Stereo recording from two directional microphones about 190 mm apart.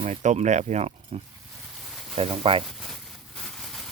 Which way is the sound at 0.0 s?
40° right (ahead or behind).